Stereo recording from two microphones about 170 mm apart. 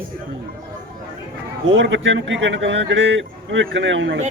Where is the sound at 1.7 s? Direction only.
90° right.